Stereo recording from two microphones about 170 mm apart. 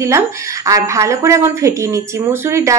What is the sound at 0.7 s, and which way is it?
Speech, 20° right (ahead or behind).